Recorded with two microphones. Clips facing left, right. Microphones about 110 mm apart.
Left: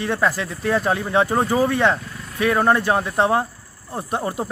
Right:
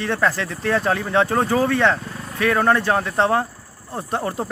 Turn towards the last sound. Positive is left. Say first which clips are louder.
# even
turn(degrees=10)  # may be behind; listen again after turning